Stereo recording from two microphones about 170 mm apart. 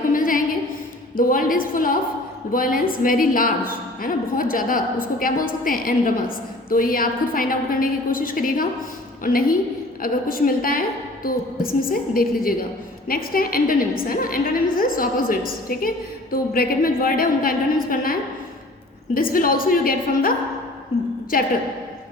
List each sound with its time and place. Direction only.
0.1 s a sound: 55° left (ahead or behind)
1.1 s a woman's voice: 55° left (ahead or behind)
21.3 s a woman's voice: 55° left (ahead or behind)